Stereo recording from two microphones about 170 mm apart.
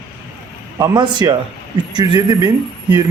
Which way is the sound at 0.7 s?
25° right (ahead or behind).